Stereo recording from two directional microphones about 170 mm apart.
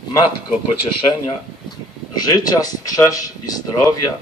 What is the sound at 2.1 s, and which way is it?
Speech, 20° left (ahead or behind).